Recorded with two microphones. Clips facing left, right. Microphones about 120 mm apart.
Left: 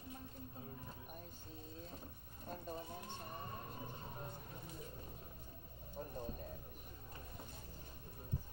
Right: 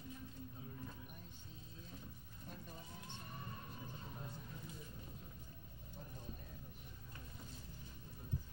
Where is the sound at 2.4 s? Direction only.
40° left (ahead or behind).